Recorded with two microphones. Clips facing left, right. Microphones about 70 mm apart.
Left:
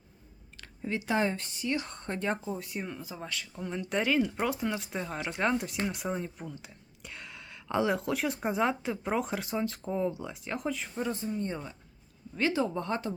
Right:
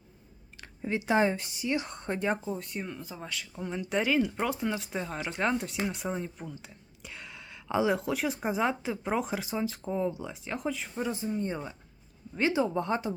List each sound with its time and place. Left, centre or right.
0.6 s speech: right
2.5 s speech: centre
11.3 s speech: centre